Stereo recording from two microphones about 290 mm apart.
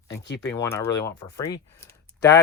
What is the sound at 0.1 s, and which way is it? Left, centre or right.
Speech, left.